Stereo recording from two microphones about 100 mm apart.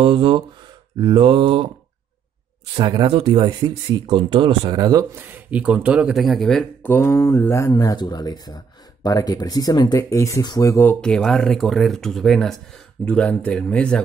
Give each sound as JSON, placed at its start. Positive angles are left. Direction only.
{"t": 0.0, "sound": "speech", "side_deg": -60}
{"t": 3.1, "sound": "speech", "side_deg": -65}
{"t": 5.1, "sound": "speech", "side_deg": -20}
{"t": 6.1, "sound": "a man's voice", "side_deg": 0}
{"t": 6.8, "sound": "mantra", "side_deg": 25}
{"t": 7.8, "sound": "speech", "side_deg": 45}
{"t": 10.9, "sound": "speech", "side_deg": 10}